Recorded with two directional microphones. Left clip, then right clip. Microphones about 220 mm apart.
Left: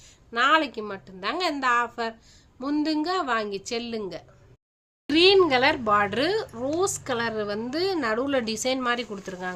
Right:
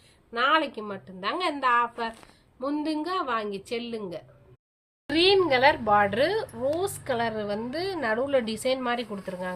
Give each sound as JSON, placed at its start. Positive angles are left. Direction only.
{"t": 0.3, "sound": "speech", "side_deg": 55}